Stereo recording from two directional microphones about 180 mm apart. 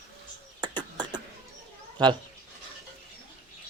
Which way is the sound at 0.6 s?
25° right (ahead or behind).